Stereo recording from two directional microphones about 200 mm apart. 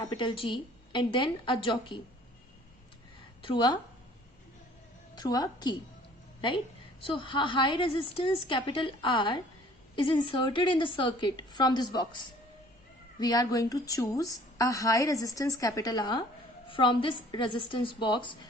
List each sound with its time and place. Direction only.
0.0 s a woman's voice: 20° left (ahead or behind)
3.4 s a woman's voice: 20° left (ahead or behind)
5.1 s a woman's voice: 20° left (ahead or behind)
7.0 s a woman's voice: 25° left (ahead or behind)